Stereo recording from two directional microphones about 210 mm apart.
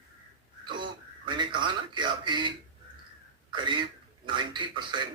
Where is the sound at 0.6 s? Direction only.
20° right (ahead or behind).